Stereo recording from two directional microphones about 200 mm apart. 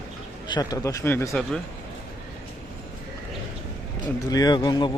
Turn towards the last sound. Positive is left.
turn(degrees=20)  # may be behind; listen again after turning